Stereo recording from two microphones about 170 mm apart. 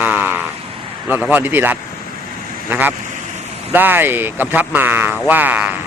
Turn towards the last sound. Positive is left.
turn(degrees=-10)  # may be behind; listen again after turning